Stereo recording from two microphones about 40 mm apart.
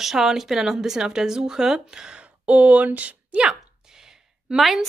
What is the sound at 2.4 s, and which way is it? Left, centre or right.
Speech, right.